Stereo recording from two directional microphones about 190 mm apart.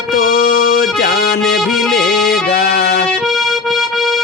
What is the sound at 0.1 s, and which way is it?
Music, 50° left (ahead or behind).